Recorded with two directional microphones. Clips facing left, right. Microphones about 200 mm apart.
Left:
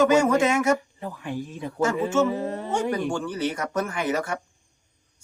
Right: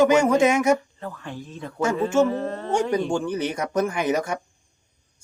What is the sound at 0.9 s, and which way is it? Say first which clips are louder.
Speech: left 3 dB; 15° left (ahead or behind).